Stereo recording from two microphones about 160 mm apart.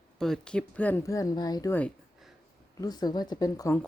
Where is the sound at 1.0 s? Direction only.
20° left (ahead or behind).